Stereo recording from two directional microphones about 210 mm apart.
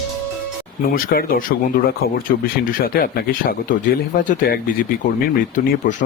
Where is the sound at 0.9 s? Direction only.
45° left (ahead or behind).